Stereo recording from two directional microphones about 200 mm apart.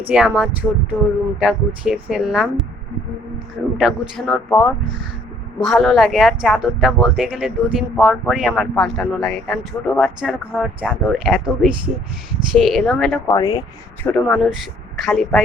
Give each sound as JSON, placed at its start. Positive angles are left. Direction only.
{"t": 0.1, "sound": "speech", "side_deg": -5}
{"t": 3.8, "sound": "speech", "side_deg": 0}
{"t": 13.2, "sound": "speech", "side_deg": 20}
{"t": 14.0, "sound": "speech", "side_deg": 5}